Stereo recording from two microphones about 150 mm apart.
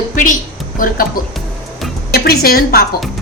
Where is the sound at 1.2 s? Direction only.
75° left (ahead or behind).